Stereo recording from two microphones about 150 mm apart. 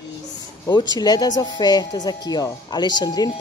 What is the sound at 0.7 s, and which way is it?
Speech, 25° left (ahead or behind).